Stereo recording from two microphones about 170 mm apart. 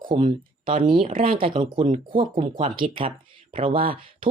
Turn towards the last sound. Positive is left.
turn(degrees=-30)  # may be behind; listen again after turning